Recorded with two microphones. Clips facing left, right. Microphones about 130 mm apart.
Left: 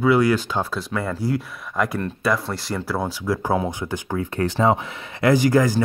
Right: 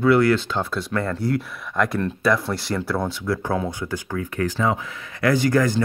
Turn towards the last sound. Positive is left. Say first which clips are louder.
# left 2 dB
turn(degrees=15)  # may be behind; listen again after turning